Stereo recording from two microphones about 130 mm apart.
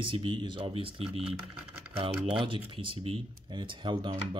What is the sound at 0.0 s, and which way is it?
Speech, 40° right (ahead or behind).